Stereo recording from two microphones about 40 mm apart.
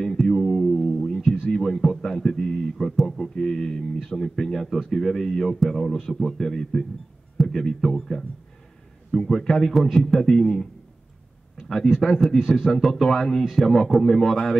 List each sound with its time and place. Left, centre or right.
0.2 s music: centre
1.2 s a sound: centre
1.5 s a sound: centre
3.0 s a sound: centre
3.3 s speech: centre
9.8 s speech: centre
12.0 s speech: centre
12.4 s speech: centre
12.8 s speech: centre